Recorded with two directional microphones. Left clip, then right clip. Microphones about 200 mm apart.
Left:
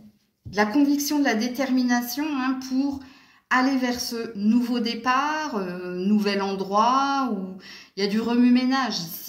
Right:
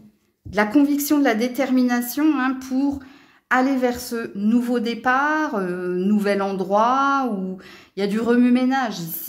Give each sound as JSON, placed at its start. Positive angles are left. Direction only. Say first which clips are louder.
{"t": 0.6, "sound": "speech", "louder": "right 3 dB", "side_deg": -50}